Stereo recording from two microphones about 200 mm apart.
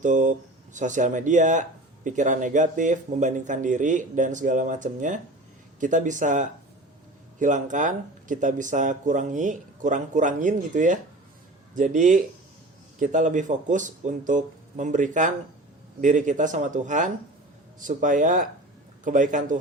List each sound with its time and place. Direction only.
0.0 s speech: 40° right (ahead or behind)